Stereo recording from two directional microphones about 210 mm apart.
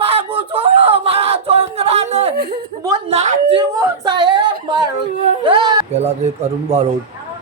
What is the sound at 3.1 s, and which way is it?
Speech, 35° right (ahead or behind).